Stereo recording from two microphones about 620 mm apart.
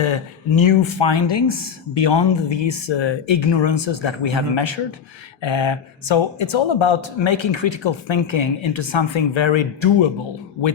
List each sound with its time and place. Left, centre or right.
0.6 s speech: left